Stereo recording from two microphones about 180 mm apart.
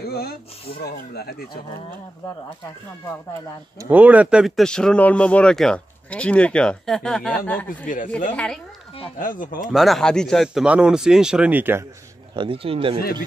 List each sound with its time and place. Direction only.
0.0 s speech: 60° left (ahead or behind)
3.8 s speech: 10° right (ahead or behind); by 7.6 s 10° left (ahead or behind)
7.8 s speech: 45° left (ahead or behind)
9.2 s speech: 50° left (ahead or behind)
9.7 s speech: centre (ahead or behind)
12.4 s speech: 30° right (ahead or behind)